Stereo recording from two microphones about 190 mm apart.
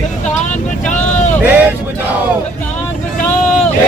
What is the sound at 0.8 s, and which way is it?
Vehicle, 40° left (ahead or behind).